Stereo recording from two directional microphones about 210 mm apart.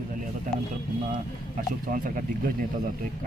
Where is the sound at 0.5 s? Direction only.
40° right (ahead or behind).